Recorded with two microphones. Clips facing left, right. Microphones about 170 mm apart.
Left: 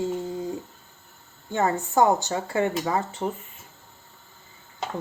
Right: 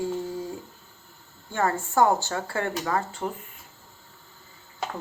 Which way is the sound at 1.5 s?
20° left (ahead or behind).